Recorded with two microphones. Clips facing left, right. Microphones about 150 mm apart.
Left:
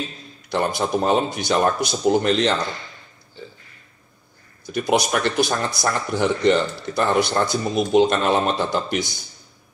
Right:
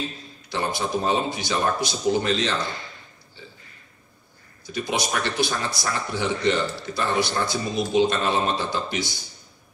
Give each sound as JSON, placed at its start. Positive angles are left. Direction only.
{"t": 0.5, "sound": "speech", "side_deg": 55}
{"t": 4.7, "sound": "speech", "side_deg": 55}